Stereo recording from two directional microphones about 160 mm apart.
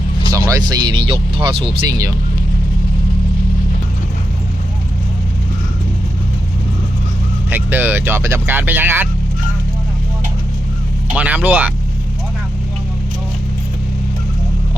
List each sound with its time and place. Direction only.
0.4 s speech: 25° right (ahead or behind)
7.5 s speech: 10° right (ahead or behind)
11.1 s speech: 10° right (ahead or behind)